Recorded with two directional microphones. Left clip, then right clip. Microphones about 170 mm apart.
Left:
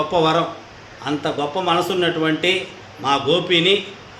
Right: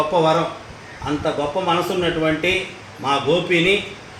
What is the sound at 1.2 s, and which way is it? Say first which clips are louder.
Speech: right 1 dB; 25° left (ahead or behind).